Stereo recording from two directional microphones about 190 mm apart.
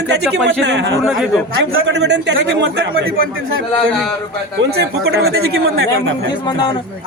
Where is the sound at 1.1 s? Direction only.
Centre (ahead or behind).